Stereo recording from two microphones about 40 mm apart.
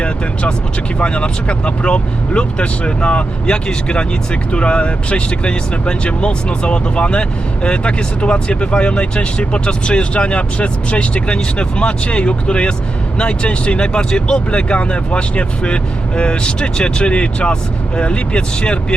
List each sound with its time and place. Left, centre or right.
0.9 s speech: left